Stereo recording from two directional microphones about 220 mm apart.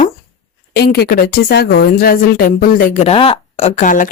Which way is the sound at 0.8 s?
45° left (ahead or behind).